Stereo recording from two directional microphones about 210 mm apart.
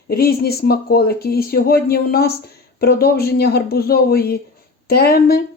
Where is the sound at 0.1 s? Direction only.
45° left (ahead or behind).